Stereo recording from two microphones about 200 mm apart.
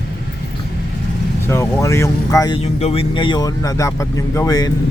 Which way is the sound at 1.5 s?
15° left (ahead or behind).